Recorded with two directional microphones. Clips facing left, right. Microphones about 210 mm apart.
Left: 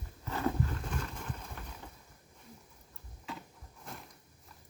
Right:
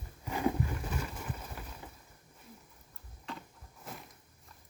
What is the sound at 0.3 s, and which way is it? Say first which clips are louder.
Wild animals: right 1 dB; 15° right (ahead or behind).